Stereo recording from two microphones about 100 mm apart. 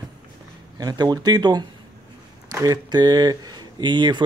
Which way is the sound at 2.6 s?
40° right (ahead or behind).